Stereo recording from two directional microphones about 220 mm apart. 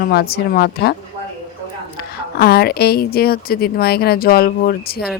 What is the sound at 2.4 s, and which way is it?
Speech, 45° left (ahead or behind).